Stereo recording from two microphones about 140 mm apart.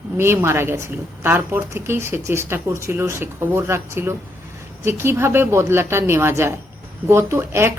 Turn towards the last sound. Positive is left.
turn(degrees=-15)  # may be behind; listen again after turning